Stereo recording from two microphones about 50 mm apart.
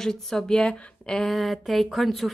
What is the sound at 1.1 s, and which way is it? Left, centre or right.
Speech, centre.